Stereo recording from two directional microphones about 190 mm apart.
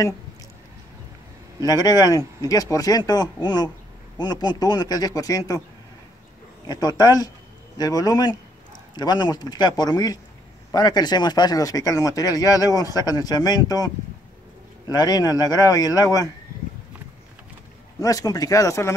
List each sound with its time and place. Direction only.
1.7 s speech: 20° left (ahead or behind)
6.7 s speech: 20° left (ahead or behind)
18.0 s speech: 20° left (ahead or behind)